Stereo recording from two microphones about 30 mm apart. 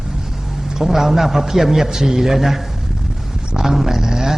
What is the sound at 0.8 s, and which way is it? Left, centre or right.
A man's voice, centre.